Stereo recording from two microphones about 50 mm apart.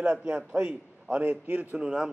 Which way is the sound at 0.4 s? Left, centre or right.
Right.